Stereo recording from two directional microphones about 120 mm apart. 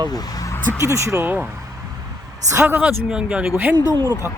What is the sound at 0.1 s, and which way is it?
Speech, 30° left (ahead or behind).